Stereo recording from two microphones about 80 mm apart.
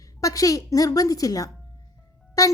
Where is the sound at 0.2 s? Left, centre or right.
Left.